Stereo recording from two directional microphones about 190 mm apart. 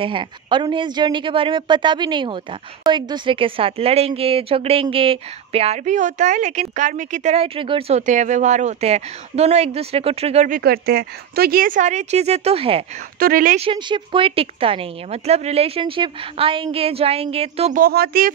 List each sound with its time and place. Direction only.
0.0 s speech: 25° right (ahead or behind)
8.0 s speech: 40° right (ahead or behind)
10.6 s speech: 55° right (ahead or behind); by 12.8 s 30° right (ahead or behind)
13.2 s speech: 50° right (ahead or behind)
13.6 s speech: 25° right (ahead or behind)
17.7 s speech: 50° right (ahead or behind)